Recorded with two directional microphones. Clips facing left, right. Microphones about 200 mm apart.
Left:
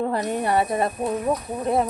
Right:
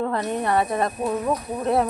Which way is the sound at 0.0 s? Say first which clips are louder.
Left 1 dB; 15° left (ahead or behind).